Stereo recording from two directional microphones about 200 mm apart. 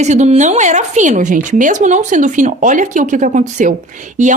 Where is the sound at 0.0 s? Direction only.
35° right (ahead or behind).